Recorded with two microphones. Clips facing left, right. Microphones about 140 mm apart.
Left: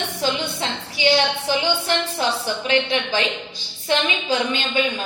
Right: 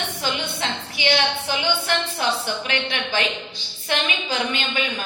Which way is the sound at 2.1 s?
30° left (ahead or behind).